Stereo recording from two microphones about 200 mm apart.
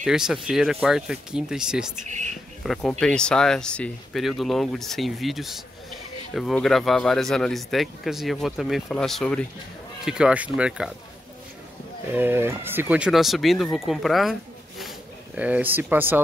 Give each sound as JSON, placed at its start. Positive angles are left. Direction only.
{"t": 0.0, "sound": "speech", "side_deg": 0}
{"t": 2.0, "sound": "speech", "side_deg": -35}
{"t": 2.6, "sound": "speech", "side_deg": 0}
{"t": 12.1, "sound": "speech", "side_deg": -10}
{"t": 14.8, "sound": "a sound", "side_deg": -5}